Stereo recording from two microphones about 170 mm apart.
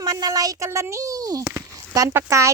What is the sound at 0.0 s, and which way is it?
A woman's voice, 20° right (ahead or behind).